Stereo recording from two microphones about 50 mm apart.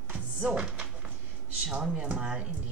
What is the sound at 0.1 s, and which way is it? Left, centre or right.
Music, right.